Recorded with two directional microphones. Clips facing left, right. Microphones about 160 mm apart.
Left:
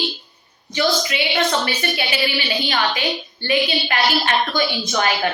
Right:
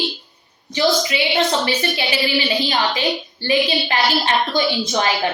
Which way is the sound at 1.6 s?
30° right (ahead or behind).